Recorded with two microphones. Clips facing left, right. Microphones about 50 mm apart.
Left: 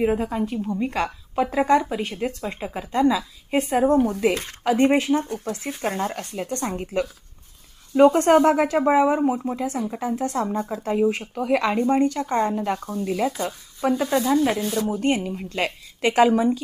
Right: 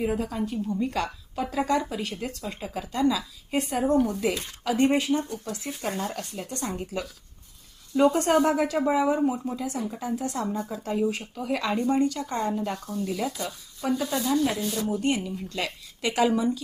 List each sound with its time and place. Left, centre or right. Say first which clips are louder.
0.0 s a woman's voice: left 5 dB; left